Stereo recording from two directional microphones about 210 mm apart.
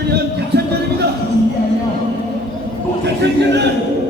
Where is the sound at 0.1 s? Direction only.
50° right (ahead or behind).